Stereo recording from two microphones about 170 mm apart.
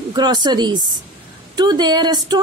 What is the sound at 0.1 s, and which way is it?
A woman's voice, 25° right (ahead or behind).